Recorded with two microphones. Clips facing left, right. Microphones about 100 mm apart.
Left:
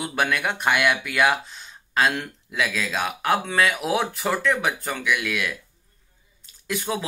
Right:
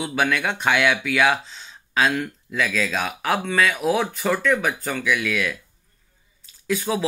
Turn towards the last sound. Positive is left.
turn(degrees=5)  # may be behind; listen again after turning